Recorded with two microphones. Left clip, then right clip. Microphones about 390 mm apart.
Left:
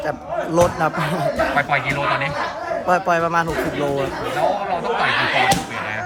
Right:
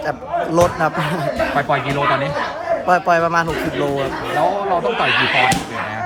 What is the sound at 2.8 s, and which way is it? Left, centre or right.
Speech, centre.